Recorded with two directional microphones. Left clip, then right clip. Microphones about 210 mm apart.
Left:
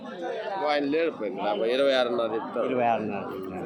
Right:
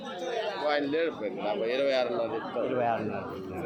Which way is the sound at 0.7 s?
45° left (ahead or behind).